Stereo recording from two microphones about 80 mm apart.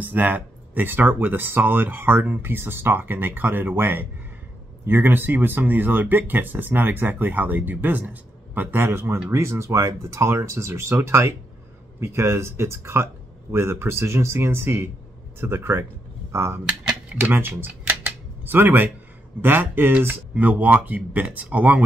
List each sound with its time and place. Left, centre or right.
0.0 s speech: right
8.8 s speech: right
16.6 s typewriter: centre
17.2 s camera: right
19.4 s speech: right